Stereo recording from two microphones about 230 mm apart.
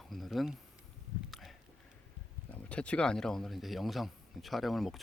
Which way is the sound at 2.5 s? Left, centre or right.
Centre.